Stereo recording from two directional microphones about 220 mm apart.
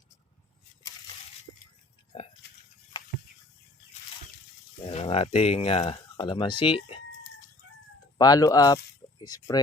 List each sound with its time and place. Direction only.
2.1 s a sound: 25° left (ahead or behind)
4.9 s speech: 25° left (ahead or behind)
8.2 s speech: 15° left (ahead or behind)